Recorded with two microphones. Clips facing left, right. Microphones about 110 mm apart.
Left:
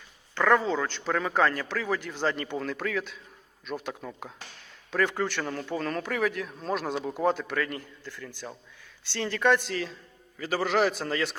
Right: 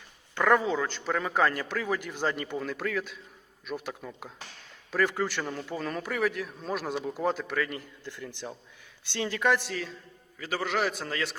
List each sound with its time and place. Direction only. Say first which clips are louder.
0.3 s a man's voice: left 1 dB; 10° right (ahead or behind)
8.0 s a man's voice: right 1 dB; 20° right (ahead or behind); by 11.3 s centre (ahead or behind)